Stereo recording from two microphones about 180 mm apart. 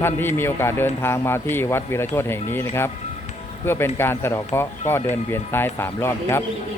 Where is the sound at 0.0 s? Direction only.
10° left (ahead or behind).